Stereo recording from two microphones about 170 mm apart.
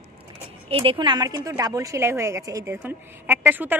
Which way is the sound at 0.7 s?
30° right (ahead or behind).